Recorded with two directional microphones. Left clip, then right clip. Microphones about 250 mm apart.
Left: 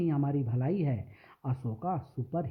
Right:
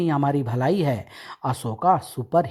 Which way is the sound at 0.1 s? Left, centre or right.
Centre.